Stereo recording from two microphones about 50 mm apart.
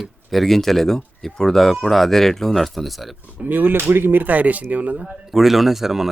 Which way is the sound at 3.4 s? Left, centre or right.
Right.